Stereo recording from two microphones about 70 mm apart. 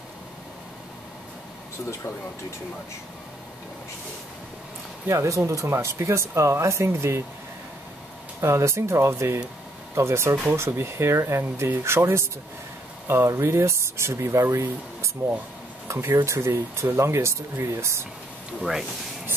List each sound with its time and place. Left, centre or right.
5.0 s speech: right
8.4 s speech: right
18.6 s speech: centre